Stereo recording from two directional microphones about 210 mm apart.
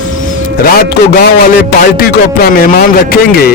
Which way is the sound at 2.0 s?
45° left (ahead or behind).